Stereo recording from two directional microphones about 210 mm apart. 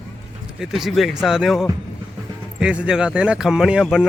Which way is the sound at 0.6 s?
Centre (ahead or behind).